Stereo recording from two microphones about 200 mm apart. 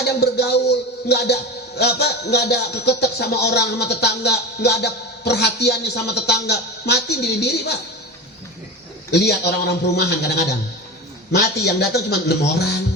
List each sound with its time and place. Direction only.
0.2 s speech: 55° left (ahead or behind)
9.1 s speech: 55° left (ahead or behind)